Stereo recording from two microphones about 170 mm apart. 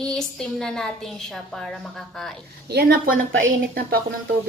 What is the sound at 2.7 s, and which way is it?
Speech, 65° right (ahead or behind).